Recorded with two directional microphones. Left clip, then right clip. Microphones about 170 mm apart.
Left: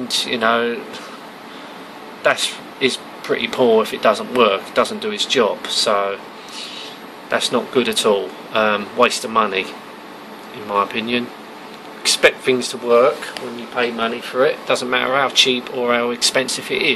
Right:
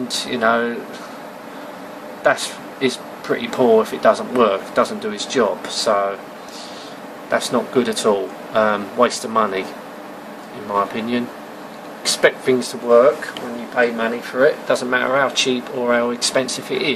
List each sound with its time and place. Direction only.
0.1 s speech: 5° left (ahead or behind)
2.2 s speech: 5° left (ahead or behind)
7.2 s speech: 5° left (ahead or behind)
10.7 s speech: 5° left (ahead or behind)
14.7 s speech: 5° left (ahead or behind)